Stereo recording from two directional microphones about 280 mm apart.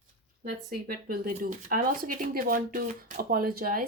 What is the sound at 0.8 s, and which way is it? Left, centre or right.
Speech, right.